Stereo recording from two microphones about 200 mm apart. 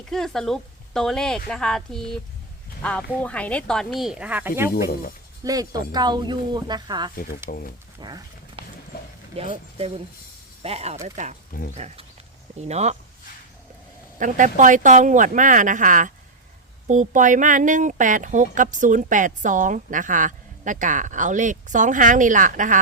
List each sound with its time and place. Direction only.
0.1 s a woman's voice: centre (ahead or behind); by 7.1 s 20° right (ahead or behind)
7.5 s speech: 45° left (ahead or behind)
8.0 s dog: 20° right (ahead or behind)
9.3 s a woman's voice: 30° right (ahead or behind)
14.2 s speech: 40° right (ahead or behind)